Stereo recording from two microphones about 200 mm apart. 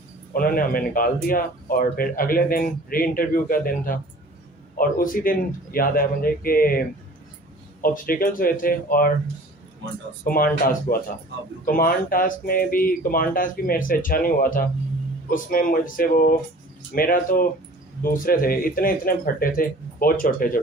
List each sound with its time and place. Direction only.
0.3 s speech: 45° left (ahead or behind)
10.2 s speech: 45° left (ahead or behind)